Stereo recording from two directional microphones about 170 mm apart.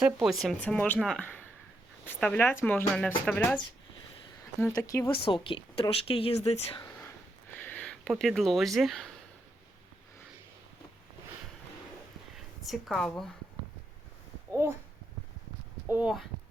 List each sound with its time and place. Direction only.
0.0 s a woman's voice: centre (ahead or behind)
4.7 s speech: 20° left (ahead or behind)
5.2 s speech: 30° left (ahead or behind)
7.6 s a sound: 5° left (ahead or behind)
8.1 s a woman's voice: centre (ahead or behind)
12.6 s a woman's voice: centre (ahead or behind)
15.9 s a woman's voice: 5° right (ahead or behind)